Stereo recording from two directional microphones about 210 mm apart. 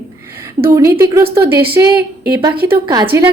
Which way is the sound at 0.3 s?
15° right (ahead or behind).